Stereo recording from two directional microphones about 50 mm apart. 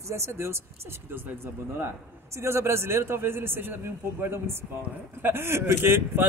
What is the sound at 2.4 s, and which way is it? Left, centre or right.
A man's voice, right.